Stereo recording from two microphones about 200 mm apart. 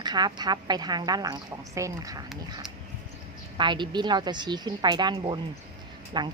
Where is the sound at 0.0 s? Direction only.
20° right (ahead or behind).